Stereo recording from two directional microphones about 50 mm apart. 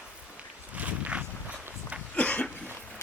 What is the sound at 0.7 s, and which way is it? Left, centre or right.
Walk, right.